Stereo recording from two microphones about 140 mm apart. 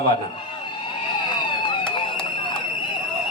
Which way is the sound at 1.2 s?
35° left (ahead or behind).